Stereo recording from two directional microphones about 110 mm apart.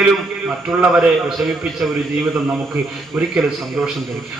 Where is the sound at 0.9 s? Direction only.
Centre (ahead or behind).